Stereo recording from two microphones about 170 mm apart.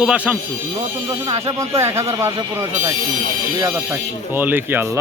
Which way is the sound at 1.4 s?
15° right (ahead or behind).